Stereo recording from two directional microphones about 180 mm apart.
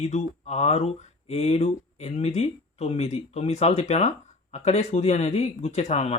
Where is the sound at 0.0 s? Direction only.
40° left (ahead or behind).